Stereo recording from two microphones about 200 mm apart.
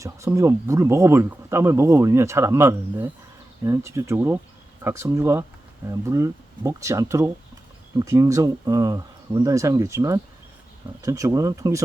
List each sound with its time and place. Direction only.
0.0 s speech: 15° right (ahead or behind)